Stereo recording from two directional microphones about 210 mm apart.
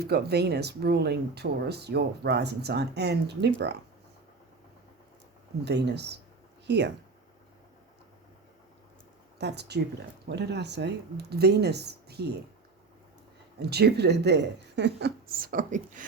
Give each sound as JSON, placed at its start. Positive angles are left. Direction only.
{"t": 0.0, "sound": "speech", "side_deg": -50}
{"t": 5.6, "sound": "speech", "side_deg": -55}
{"t": 9.4, "sound": "speech", "side_deg": -55}
{"t": 13.6, "sound": "speech", "side_deg": -50}